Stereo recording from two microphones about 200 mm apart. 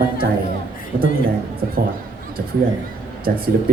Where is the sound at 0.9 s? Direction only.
40° right (ahead or behind).